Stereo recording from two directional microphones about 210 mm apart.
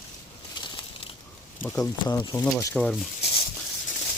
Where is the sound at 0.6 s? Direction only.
25° left (ahead or behind).